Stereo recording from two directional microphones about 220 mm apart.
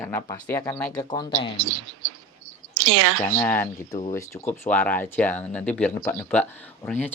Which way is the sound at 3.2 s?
10° left (ahead or behind).